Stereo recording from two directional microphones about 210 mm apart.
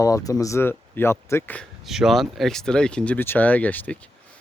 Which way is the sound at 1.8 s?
Centre (ahead or behind).